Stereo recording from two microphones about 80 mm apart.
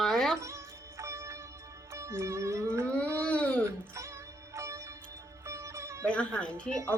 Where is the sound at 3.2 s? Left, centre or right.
Centre.